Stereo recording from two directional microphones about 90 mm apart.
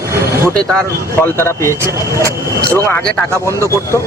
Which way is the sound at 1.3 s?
30° left (ahead or behind).